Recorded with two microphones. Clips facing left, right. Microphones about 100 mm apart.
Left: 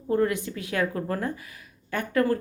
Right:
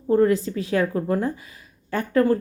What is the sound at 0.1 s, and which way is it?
Speech, 30° right (ahead or behind).